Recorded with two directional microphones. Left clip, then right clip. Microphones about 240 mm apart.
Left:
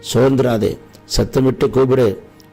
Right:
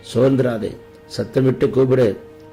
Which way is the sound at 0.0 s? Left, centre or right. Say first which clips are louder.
Left 2 dB; left.